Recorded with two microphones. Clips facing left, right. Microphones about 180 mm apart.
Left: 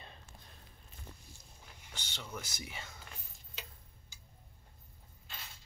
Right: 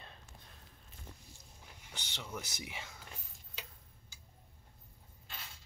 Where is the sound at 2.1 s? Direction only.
15° right (ahead or behind).